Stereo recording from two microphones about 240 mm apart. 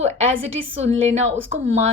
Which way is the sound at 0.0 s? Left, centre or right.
Right.